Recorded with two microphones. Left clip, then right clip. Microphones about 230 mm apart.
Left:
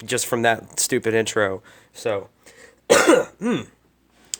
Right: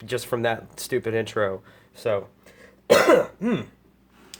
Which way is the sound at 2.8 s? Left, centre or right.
Left.